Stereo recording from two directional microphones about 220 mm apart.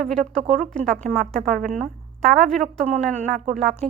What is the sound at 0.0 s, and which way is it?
A woman's voice, centre (ahead or behind).